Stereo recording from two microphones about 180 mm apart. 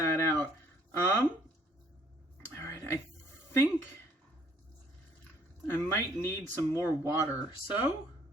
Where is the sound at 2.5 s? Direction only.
15° left (ahead or behind).